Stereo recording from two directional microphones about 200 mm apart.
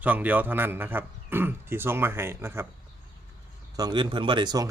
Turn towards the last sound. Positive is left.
turn(degrees=-20)  # may be behind; listen again after turning